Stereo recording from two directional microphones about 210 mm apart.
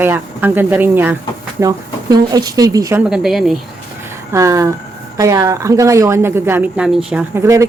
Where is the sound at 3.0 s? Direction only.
Centre (ahead or behind).